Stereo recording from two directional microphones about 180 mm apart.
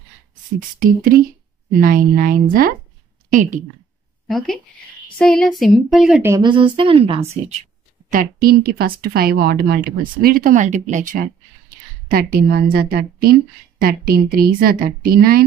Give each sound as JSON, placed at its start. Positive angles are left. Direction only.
{"t": 0.6, "sound": "a woman's voice", "side_deg": -50}
{"t": 5.1, "sound": "speech", "side_deg": 5}
{"t": 6.3, "sound": "a woman's voice", "side_deg": -25}
{"t": 8.1, "sound": "a woman's voice", "side_deg": -55}